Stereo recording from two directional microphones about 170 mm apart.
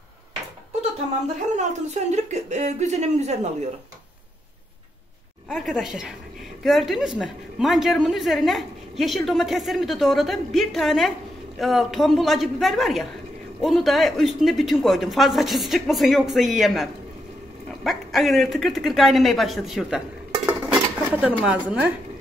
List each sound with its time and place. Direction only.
1.6 s a woman's voice: 45° right (ahead or behind)
5.5 s a woman's voice: centre (ahead or behind)
20.4 s dishes: 10° right (ahead or behind)